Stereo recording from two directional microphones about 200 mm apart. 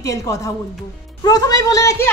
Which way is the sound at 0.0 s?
15° left (ahead or behind).